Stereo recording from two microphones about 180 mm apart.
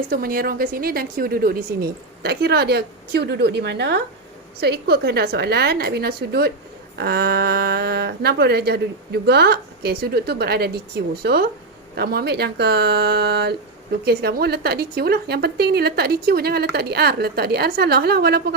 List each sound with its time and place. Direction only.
0.1 s speech: 55° right (ahead or behind)